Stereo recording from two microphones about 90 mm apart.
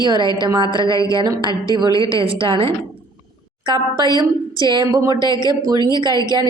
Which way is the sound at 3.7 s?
55° right (ahead or behind).